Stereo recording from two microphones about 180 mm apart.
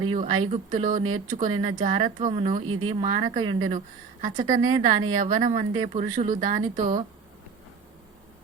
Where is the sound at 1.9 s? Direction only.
25° right (ahead or behind).